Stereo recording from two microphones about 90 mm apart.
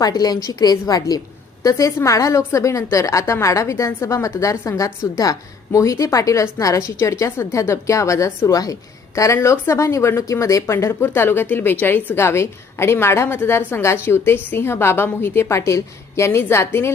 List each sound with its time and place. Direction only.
0.0 s a woman's voice: 45° left (ahead or behind); by 16.9 s 30° left (ahead or behind)